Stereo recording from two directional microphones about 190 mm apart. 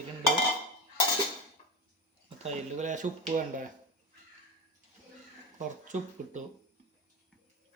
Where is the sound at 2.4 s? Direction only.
40° right (ahead or behind).